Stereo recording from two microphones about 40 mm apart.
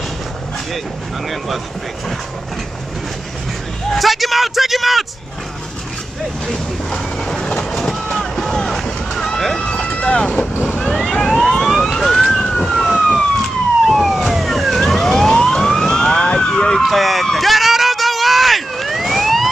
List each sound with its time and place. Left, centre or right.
3.9 s a man's voice: centre
6.9 s train: centre
8.2 s run: centre
9.6 s run: left
10.6 s vehicle: left
11.2 s emergency vehicle: centre
11.7 s emergency vehicle: centre
12.3 s police car: centre
16.2 s a sound: left
16.8 s a man's voice: centre
17.3 s vehicle: centre